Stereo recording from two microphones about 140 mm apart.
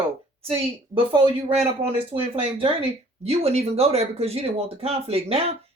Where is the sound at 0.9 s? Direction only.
40° right (ahead or behind).